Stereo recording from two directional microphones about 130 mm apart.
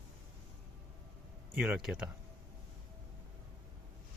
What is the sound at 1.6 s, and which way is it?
Speech, 5° right (ahead or behind).